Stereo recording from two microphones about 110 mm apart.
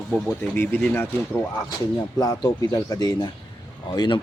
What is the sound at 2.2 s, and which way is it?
Speech, 35° left (ahead or behind).